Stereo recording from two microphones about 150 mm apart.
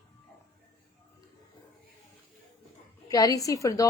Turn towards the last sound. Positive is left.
turn(degrees=20)  # may be behind; listen again after turning